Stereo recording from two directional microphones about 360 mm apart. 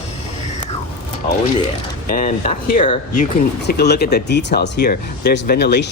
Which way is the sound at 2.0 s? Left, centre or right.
Left.